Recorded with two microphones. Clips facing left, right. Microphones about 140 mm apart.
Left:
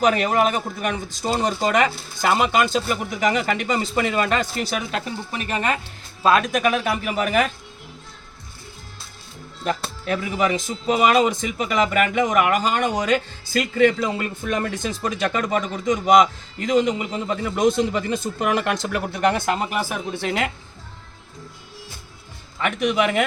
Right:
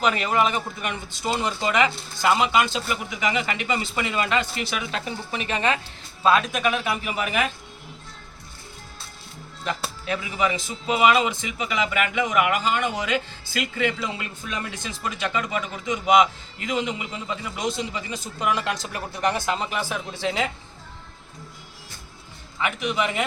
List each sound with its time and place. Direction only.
0.0 s speech: 45° left (ahead or behind)
10.1 s speech: 50° left (ahead or behind)
22.8 s speech: 50° left (ahead or behind)